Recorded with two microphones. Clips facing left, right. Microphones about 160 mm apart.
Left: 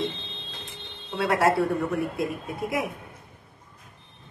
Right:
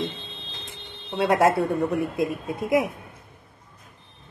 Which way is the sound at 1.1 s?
20° right (ahead or behind).